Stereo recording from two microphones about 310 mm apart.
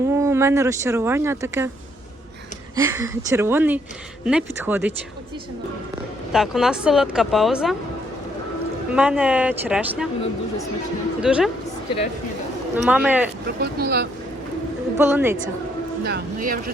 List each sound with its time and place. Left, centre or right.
0.2 s speech: centre
2.7 s a woman's voice: centre
6.3 s a woman's voice: centre
9.0 s a woman's voice: centre
11.2 s a woman's voice: centre
12.7 s a woman's voice: centre
13.6 s speech: right
14.9 s speech: centre
16.0 s speech: right